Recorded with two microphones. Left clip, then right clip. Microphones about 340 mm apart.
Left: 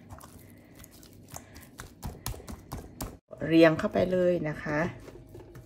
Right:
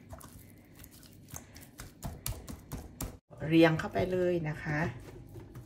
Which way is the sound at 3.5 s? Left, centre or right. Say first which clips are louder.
Left 4 dB; left.